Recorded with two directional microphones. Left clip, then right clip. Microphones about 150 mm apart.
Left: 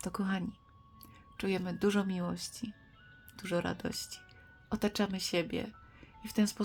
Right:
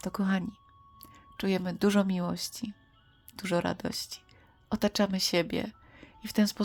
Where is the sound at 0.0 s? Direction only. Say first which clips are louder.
Right 4 dB; 25° right (ahead or behind).